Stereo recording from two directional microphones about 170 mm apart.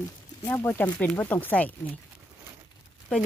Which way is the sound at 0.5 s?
10° left (ahead or behind).